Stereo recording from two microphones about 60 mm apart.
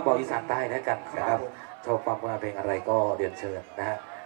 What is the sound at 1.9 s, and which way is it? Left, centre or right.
Speech, centre.